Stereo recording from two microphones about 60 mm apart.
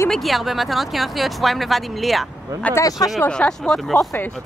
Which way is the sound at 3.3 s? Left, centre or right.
Centre.